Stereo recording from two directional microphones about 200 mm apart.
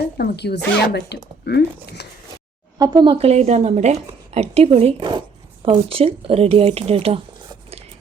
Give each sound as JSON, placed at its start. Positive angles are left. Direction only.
{"t": 0.0, "sound": "speech", "side_deg": 55}
{"t": 2.7, "sound": "speech", "side_deg": -20}